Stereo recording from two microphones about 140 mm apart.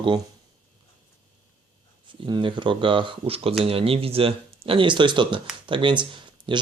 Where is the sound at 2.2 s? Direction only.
35° right (ahead or behind).